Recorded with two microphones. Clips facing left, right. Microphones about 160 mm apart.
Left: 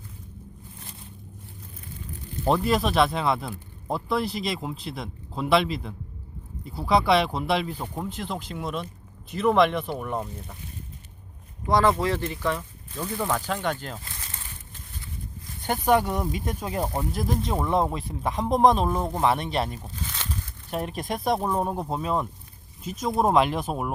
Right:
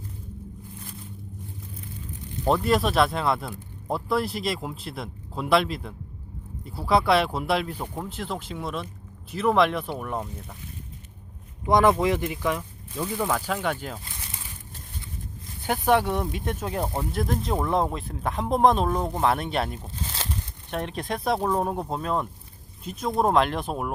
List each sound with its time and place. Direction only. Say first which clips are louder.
2.4 s speech: right 1 dB; centre (ahead or behind)
11.6 s speech: right 2 dB; 15° right (ahead or behind)
15.6 s speech: even; centre (ahead or behind)
20.1 s a sound: right 3 dB; 30° right (ahead or behind)
20.7 s speech: even; 5° left (ahead or behind)